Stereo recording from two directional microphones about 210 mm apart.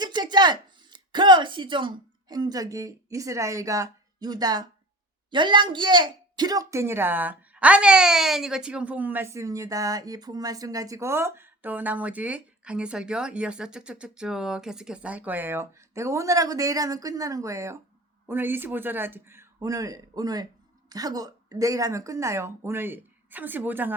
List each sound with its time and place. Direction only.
0.0 s speech: 20° right (ahead or behind)